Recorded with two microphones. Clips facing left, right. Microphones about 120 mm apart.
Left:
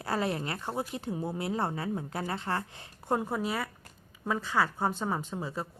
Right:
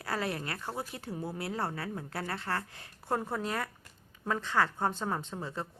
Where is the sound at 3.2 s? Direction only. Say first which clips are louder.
Even; 10° left (ahead or behind).